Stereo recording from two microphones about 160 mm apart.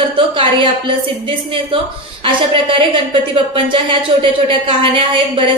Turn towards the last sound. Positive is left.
turn(degrees=-35)  # may be behind; listen again after turning